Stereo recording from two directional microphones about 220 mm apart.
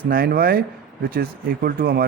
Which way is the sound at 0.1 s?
45° right (ahead or behind).